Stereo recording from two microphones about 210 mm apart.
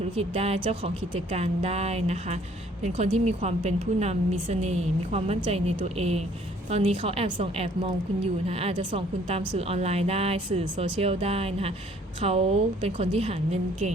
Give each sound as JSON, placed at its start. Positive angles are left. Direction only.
{"t": 0.2, "sound": "a woman's voice", "side_deg": -30}